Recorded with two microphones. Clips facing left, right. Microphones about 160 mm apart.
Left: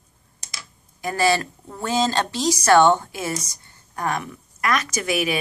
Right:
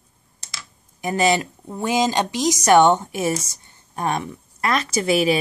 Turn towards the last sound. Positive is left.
turn(degrees=-30)  # may be behind; listen again after turning